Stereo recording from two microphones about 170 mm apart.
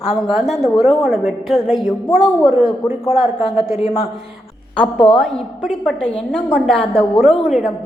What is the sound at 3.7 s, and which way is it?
Speech, 35° left (ahead or behind).